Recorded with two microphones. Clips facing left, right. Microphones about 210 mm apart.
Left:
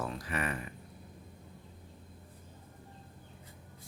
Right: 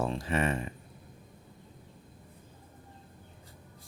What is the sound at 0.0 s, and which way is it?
Speech, 25° right (ahead or behind).